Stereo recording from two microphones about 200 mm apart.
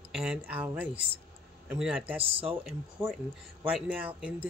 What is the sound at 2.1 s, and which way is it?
Speech, 30° right (ahead or behind).